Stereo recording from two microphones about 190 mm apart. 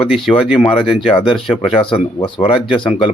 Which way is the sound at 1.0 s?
25° left (ahead or behind).